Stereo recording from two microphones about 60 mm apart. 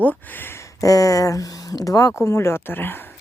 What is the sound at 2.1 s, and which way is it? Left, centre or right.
Speech, left.